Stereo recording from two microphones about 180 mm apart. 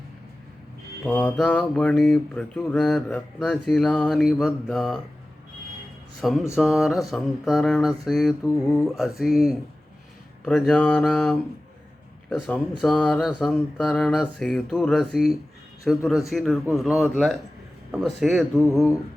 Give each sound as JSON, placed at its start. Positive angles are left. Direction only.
{"t": 1.0, "sound": "mantra", "side_deg": 10}
{"t": 6.2, "sound": "mantra", "side_deg": 0}
{"t": 8.4, "sound": "mantra", "side_deg": 15}
{"t": 9.0, "sound": "mantra", "side_deg": 0}